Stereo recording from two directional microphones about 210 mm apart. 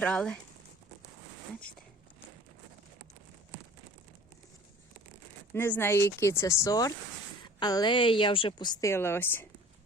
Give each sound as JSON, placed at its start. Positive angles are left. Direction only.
{"t": 0.0, "sound": "speech", "side_deg": 5}
{"t": 5.5, "sound": "a woman's voice", "side_deg": 10}